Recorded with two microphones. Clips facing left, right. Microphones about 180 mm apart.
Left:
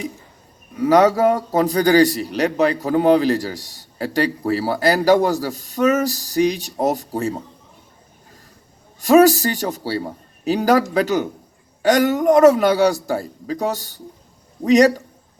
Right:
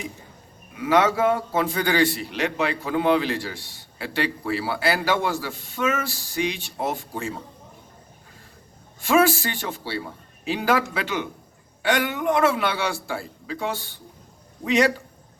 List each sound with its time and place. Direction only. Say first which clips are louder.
0.7 s a man's voice: left 6 dB; 40° left (ahead or behind)
9.0 s a man's voice: left 7 dB; 40° left (ahead or behind)